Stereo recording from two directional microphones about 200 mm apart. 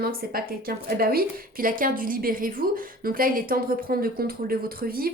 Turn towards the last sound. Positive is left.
turn(degrees=-45)  # may be behind; listen again after turning